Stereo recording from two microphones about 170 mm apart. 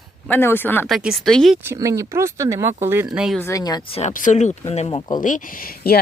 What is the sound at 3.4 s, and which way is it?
Speech, 20° left (ahead or behind).